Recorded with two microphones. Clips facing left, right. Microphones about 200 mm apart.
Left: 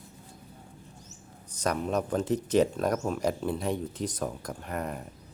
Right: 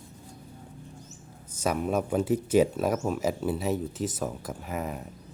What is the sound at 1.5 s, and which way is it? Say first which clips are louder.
Speech: right 2 dB; 5° right (ahead or behind).